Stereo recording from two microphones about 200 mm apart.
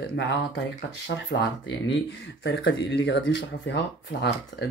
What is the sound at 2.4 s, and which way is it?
Speech, 60° left (ahead or behind).